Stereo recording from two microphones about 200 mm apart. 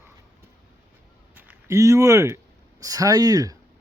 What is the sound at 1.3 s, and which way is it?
A man's voice, 10° right (ahead or behind).